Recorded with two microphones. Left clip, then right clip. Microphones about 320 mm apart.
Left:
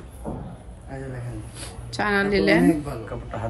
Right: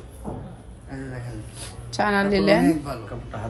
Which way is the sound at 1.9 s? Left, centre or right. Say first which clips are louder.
Right 1 dB; centre.